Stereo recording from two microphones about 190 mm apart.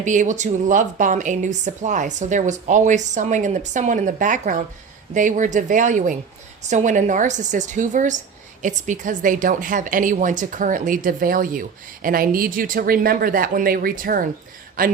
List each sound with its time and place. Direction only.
0.0 s a woman's voice: 40° right (ahead or behind)